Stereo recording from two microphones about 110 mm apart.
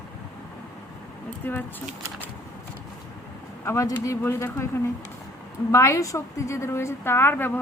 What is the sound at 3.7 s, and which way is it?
A woman's voice, 30° left (ahead or behind).